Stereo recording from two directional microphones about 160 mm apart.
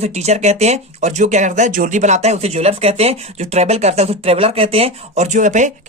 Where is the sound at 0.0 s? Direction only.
40° right (ahead or behind).